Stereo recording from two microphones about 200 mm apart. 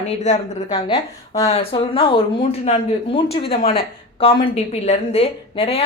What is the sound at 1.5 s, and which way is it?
Speech, 30° left (ahead or behind).